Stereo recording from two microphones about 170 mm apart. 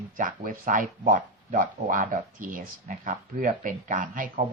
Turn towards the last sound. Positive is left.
turn(degrees=-50)  # may be behind; listen again after turning